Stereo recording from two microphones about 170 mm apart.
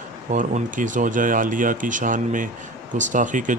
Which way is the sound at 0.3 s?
50° right (ahead or behind).